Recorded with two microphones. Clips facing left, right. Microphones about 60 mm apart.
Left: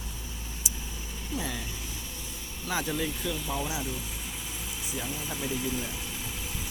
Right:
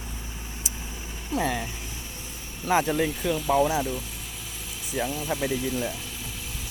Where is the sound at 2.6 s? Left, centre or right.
Right.